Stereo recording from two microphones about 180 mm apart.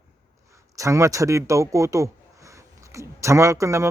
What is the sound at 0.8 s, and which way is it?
Speech, 15° right (ahead or behind).